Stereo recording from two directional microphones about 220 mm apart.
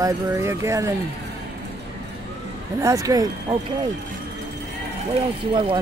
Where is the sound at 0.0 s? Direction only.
10° right (ahead or behind).